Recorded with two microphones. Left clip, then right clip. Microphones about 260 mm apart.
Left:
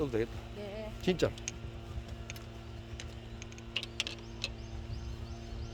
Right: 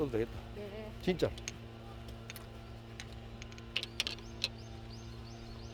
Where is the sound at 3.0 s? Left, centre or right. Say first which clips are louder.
Left 1 dB; centre.